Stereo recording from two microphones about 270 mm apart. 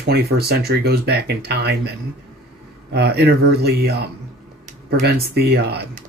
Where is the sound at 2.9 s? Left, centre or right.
Right.